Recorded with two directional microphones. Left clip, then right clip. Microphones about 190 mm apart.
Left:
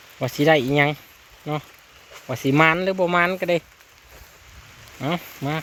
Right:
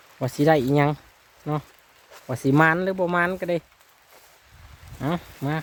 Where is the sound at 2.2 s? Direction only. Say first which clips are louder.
Left 2 dB; 25° right (ahead or behind).